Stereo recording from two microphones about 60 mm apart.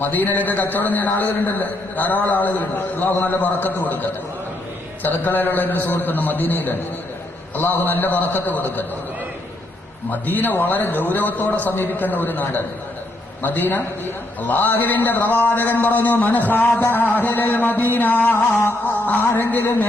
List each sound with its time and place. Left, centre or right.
0.0 s a man's voice: left
10.1 s a man's voice: left